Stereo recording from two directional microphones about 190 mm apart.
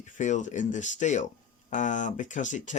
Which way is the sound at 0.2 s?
40° left (ahead or behind).